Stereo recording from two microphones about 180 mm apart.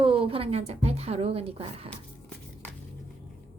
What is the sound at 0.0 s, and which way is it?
A woman's voice, 30° right (ahead or behind).